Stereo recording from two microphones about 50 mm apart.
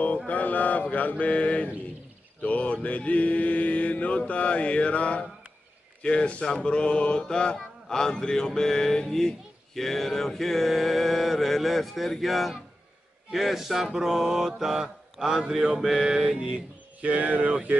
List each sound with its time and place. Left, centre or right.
0.3 s mantra: left; by 16.6 s centre
17.0 s speech: right